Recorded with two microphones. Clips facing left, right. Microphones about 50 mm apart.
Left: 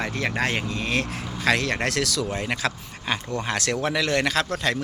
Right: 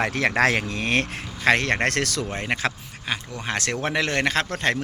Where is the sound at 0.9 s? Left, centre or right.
Right.